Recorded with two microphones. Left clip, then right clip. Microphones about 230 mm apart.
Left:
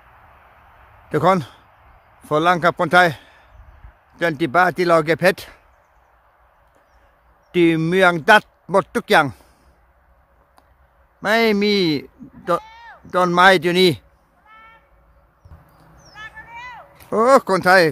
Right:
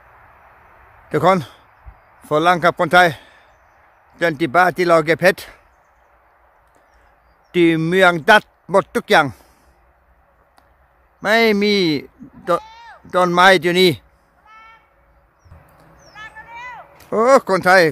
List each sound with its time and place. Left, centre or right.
1.0 s a man's voice: centre
7.5 s speech: centre
11.1 s speech: centre
12.6 s a sound: centre
13.0 s speech: centre
16.1 s a sound: centre